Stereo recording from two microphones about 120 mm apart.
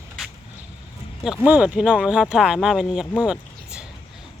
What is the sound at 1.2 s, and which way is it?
Speech, 10° right (ahead or behind).